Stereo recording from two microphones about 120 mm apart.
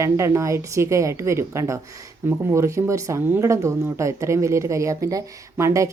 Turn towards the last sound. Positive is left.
turn(degrees=-25)  # may be behind; listen again after turning